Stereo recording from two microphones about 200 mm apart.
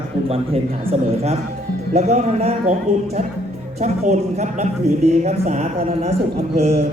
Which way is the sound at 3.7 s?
35° right (ahead or behind).